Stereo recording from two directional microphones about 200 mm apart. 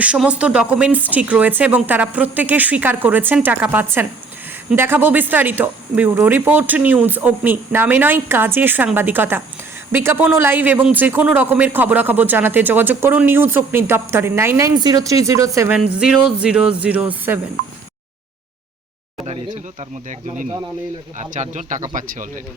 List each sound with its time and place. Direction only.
0.0 s a man's voice: 5° right (ahead or behind)
19.2 s speech: 35° right (ahead or behind)
21.2 s speech: 40° right (ahead or behind)